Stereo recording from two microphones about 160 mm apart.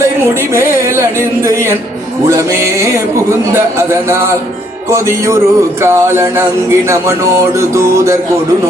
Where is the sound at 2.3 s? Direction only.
20° right (ahead or behind).